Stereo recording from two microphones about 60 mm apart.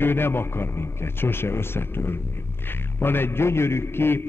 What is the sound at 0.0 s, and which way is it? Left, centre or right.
A man's voice, left.